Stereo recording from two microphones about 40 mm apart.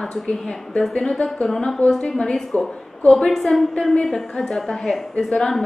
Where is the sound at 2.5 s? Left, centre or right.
Left.